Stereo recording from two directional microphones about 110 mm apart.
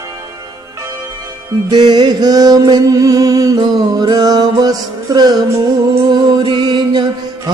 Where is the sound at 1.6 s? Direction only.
40° right (ahead or behind).